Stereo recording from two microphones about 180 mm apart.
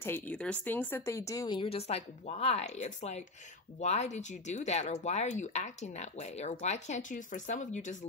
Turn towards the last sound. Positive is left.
turn(degrees=45)  # may be behind; listen again after turning